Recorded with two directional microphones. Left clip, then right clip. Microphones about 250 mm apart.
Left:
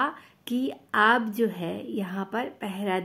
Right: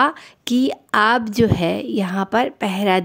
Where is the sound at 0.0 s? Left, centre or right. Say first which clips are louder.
Right 10 dB; right.